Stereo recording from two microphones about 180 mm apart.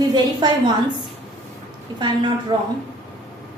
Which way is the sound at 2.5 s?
25° right (ahead or behind).